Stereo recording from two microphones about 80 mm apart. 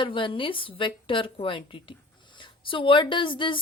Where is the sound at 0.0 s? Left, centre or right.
Left.